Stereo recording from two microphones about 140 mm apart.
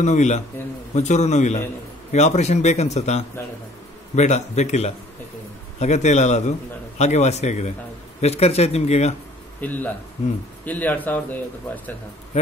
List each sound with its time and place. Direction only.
0.0 s a man's voice: 55° left (ahead or behind)
9.6 s speech: 10° left (ahead or behind)